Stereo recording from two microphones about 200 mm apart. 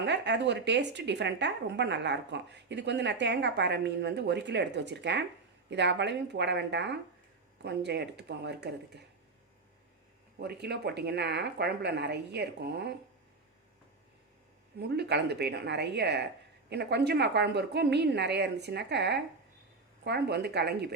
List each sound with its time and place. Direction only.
0.0 s speech: 60° right (ahead or behind)
10.4 s speech: 55° right (ahead or behind)
14.8 s speech: 55° right (ahead or behind)